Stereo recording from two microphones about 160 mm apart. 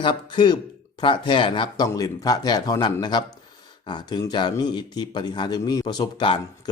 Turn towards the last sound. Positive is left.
turn(degrees=30)  # may be behind; listen again after turning